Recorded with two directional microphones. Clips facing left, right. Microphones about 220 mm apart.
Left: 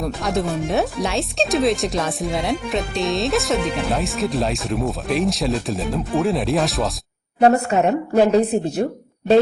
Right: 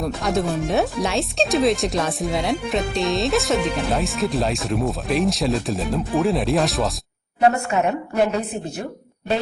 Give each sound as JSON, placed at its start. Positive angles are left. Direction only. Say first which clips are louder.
{"t": 0.0, "sound": "speech", "louder": "even", "side_deg": 0}
{"t": 7.4, "sound": "a woman's voice", "louder": "left 3 dB", "side_deg": 35}